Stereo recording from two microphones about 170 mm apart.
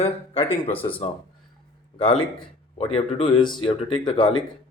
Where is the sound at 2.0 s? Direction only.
30° left (ahead or behind).